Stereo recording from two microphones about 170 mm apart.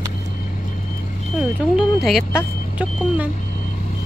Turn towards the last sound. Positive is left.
turn(degrees=-10)  # may be behind; listen again after turning